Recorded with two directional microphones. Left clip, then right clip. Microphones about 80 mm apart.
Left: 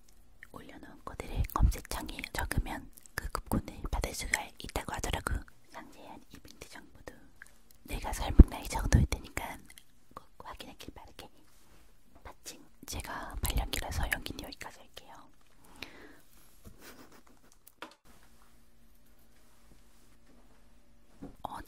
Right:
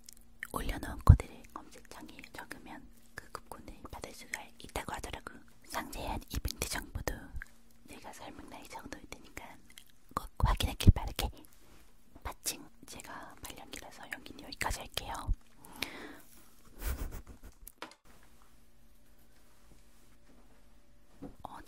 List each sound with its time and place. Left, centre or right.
0.0 s whispering: right
1.3 s whispering: left; by 4.7 s centre
4.7 s whispering: centre
5.0 s whispering: left
5.7 s whispering: right
7.8 s whispering: left
10.1 s whispering: right
12.2 s dog: right
12.8 s whispering: centre
14.7 s whispering: right
15.6 s whispering: right
16.7 s a sound: right
21.4 s whispering: centre